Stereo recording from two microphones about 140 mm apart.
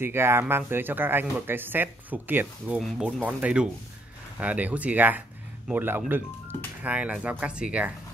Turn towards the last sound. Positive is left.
turn(degrees=-5)  # may be behind; listen again after turning